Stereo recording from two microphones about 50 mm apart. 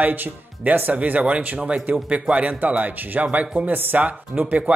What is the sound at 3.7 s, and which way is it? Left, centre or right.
Speech, right.